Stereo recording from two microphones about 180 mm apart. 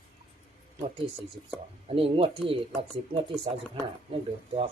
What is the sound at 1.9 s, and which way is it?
Speech, 30° right (ahead or behind).